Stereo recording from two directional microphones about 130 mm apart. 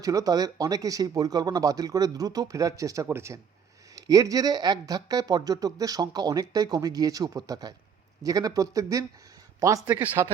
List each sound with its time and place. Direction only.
0.0 s speech: 25° right (ahead or behind)